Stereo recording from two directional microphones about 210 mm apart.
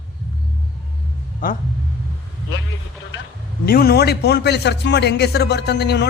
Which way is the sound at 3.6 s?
45° left (ahead or behind).